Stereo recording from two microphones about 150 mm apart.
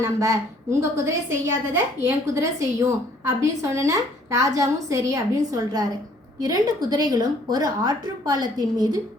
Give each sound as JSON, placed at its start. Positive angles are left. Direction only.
{"t": 0.0, "sound": "a woman's voice", "side_deg": -20}